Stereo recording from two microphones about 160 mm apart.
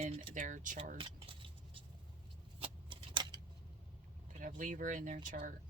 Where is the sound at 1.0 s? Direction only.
35° right (ahead or behind).